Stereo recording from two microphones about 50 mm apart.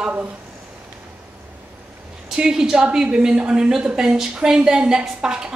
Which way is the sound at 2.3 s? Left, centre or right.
Centre.